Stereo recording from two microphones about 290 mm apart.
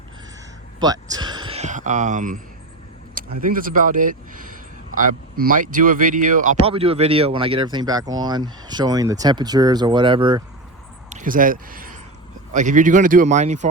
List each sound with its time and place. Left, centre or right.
0.8 s speech: centre
3.4 s speech: right
11.1 s speech: right